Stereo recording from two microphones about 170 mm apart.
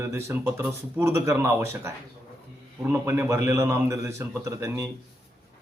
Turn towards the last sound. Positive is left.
turn(degrees=-15)  # may be behind; listen again after turning